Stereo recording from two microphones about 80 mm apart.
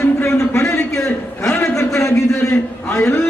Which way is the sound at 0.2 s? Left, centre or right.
Left.